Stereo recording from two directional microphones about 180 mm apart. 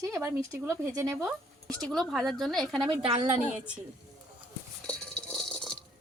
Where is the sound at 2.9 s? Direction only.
30° right (ahead or behind).